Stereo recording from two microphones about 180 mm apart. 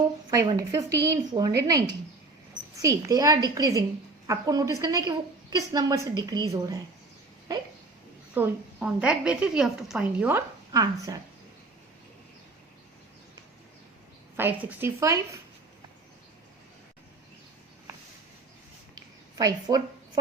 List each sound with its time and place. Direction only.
0.3 s a woman's voice: 20° right (ahead or behind)
8.3 s a woman's voice: 5° right (ahead or behind)
10.7 s a woman's voice: 20° right (ahead or behind)
14.3 s a woman's voice: 10° right (ahead or behind)
18.9 s a sound: 20° right (ahead or behind)